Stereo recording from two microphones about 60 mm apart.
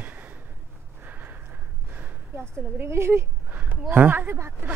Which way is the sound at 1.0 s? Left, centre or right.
Right.